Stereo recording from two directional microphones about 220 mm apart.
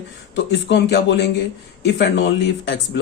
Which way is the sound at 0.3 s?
50° left (ahead or behind).